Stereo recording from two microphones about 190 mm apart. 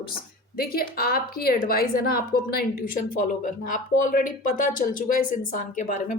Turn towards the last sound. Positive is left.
turn(degrees=45)  # may be behind; listen again after turning